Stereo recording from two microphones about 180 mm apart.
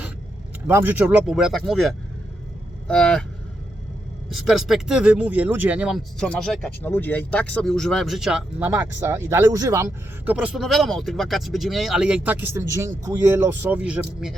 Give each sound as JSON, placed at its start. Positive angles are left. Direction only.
{"t": 0.7, "sound": "speech", "side_deg": -10}
{"t": 4.3, "sound": "speech", "side_deg": 0}
{"t": 10.3, "sound": "speech", "side_deg": -5}